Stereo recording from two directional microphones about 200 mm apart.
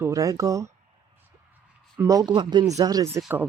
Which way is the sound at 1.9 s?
15° right (ahead or behind).